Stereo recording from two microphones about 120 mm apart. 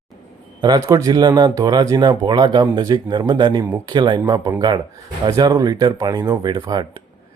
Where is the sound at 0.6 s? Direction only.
30° right (ahead or behind).